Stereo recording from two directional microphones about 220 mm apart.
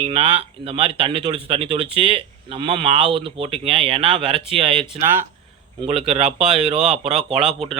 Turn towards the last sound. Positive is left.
turn(degrees=0)  # may be behind; listen again after turning